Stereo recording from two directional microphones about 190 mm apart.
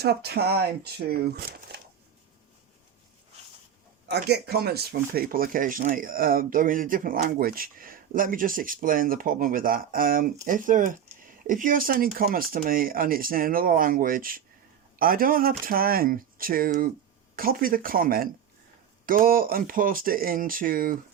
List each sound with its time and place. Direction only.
0.0 s speech: 55° right (ahead or behind)
4.1 s speech: 60° right (ahead or behind)